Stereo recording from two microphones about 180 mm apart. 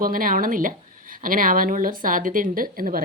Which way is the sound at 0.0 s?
50° right (ahead or behind).